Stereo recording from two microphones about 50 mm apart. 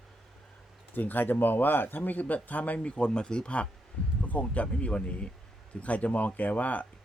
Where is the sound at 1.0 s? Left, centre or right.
Left.